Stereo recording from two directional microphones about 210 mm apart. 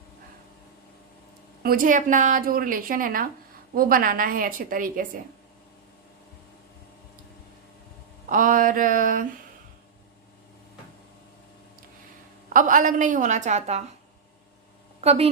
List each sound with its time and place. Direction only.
1.6 s a woman's voice: 40° right (ahead or behind)
8.3 s a woman's voice: 40° right (ahead or behind)
12.5 s a woman's voice: 40° right (ahead or behind)
15.0 s a woman's voice: 30° right (ahead or behind)